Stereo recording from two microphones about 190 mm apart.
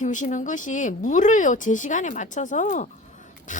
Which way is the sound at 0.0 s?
40° left (ahead or behind).